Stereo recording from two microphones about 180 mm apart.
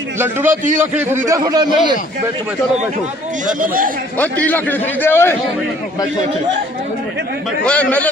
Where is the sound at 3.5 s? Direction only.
50° right (ahead or behind).